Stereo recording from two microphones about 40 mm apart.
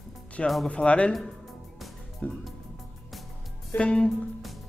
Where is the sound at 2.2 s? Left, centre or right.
Left.